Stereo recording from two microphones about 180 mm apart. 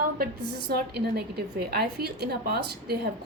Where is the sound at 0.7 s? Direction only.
60° right (ahead or behind).